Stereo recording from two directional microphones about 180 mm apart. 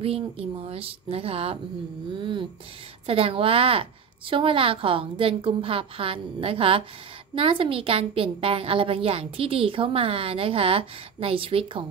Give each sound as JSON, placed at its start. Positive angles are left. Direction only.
{"t": 0.0, "sound": "a woman's voice", "side_deg": -30}
{"t": 2.1, "sound": "music", "side_deg": -25}
{"t": 3.1, "sound": "a woman's voice", "side_deg": -30}